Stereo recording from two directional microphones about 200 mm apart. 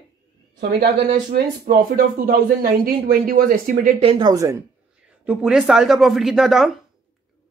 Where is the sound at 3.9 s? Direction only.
25° right (ahead or behind).